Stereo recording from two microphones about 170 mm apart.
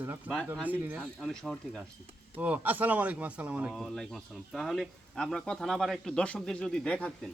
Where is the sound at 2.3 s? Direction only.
10° right (ahead or behind).